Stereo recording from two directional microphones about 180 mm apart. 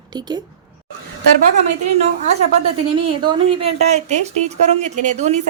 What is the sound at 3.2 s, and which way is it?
Speech, 25° right (ahead or behind).